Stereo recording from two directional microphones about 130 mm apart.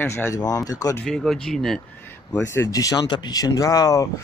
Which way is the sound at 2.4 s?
20° left (ahead or behind).